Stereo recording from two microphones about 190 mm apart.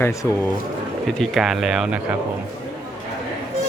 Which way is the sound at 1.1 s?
Centre (ahead or behind).